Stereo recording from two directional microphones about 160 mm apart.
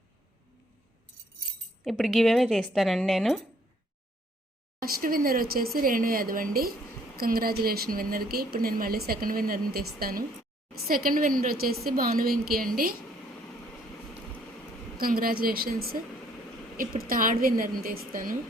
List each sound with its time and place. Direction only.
1.8 s speech: centre (ahead or behind)
4.8 s a woman's voice: 65° right (ahead or behind)
14.9 s a woman's voice: 65° right (ahead or behind)